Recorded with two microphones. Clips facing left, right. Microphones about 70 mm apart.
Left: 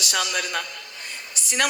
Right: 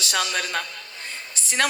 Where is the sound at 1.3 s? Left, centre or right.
Right.